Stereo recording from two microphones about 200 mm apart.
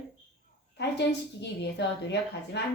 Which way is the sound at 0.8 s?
60° left (ahead or behind).